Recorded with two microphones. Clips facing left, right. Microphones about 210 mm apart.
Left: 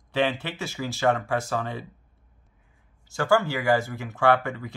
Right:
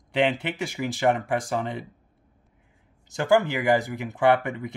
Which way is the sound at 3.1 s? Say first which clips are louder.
Right 2 dB; 20° right (ahead or behind).